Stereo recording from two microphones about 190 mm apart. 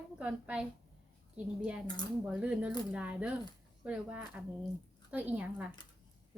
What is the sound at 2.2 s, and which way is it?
A woman's voice, 5° right (ahead or behind).